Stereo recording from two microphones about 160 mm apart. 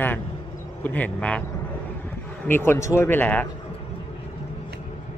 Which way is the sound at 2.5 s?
15° left (ahead or behind).